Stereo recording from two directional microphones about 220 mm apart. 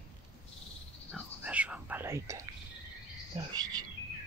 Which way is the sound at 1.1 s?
Centre (ahead or behind).